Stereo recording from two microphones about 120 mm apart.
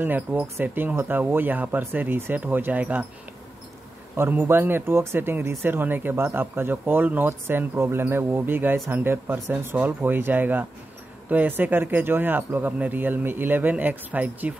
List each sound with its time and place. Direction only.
0.0 s speech: 15° right (ahead or behind)
4.2 s speech: 15° right (ahead or behind)